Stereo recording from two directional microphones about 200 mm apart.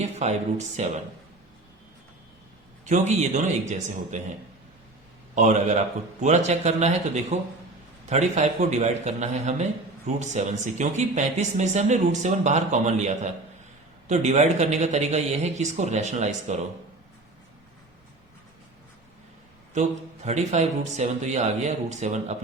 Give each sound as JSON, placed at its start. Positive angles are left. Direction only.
{"t": 0.0, "sound": "speech", "side_deg": -35}
{"t": 2.8, "sound": "speech", "side_deg": -35}
{"t": 5.3, "sound": "speech", "side_deg": -35}
{"t": 19.7, "sound": "speech", "side_deg": -35}